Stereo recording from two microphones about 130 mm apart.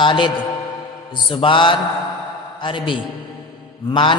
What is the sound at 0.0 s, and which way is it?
Speech, 40° left (ahead or behind).